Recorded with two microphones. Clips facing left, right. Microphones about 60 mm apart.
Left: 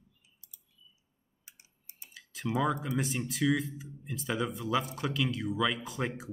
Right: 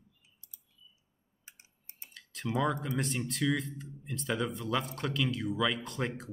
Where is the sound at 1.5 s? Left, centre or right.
Right.